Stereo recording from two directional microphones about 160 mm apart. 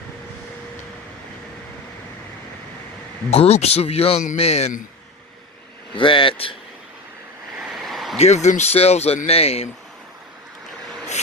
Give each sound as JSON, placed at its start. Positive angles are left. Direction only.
{"t": 3.2, "sound": "speech", "side_deg": 40}
{"t": 6.0, "sound": "speech", "side_deg": 30}
{"t": 7.6, "sound": "a sound", "side_deg": 0}
{"t": 8.2, "sound": "speech", "side_deg": 45}